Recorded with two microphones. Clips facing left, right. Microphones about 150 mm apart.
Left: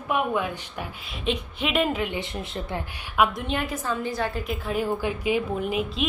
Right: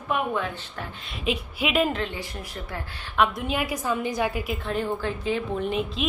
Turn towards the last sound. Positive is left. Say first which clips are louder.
# even
turn(degrees=5)  # may be behind; listen again after turning